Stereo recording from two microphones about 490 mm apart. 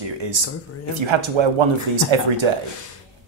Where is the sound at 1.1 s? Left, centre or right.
Right.